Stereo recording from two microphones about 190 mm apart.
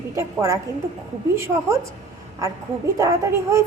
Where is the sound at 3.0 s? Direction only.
15° right (ahead or behind).